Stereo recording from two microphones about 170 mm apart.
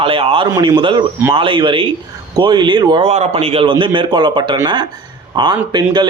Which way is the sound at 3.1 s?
40° right (ahead or behind).